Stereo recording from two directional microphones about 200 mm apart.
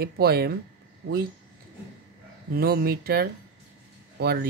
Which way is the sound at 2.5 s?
50° right (ahead or behind).